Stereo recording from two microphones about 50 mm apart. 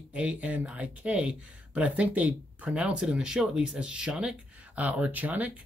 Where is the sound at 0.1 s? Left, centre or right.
Right.